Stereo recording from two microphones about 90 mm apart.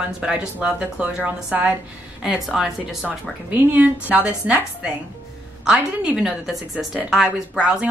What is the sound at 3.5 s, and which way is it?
A woman's voice, 20° right (ahead or behind).